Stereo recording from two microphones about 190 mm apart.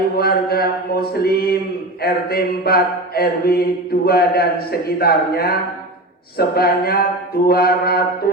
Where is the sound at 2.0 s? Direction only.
55° left (ahead or behind).